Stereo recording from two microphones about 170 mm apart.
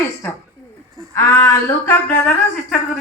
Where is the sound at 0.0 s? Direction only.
15° left (ahead or behind).